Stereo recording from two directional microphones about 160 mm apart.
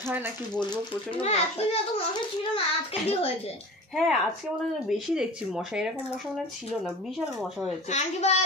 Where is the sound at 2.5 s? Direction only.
35° left (ahead or behind).